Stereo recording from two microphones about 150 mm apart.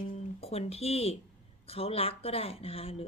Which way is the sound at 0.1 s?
40° left (ahead or behind).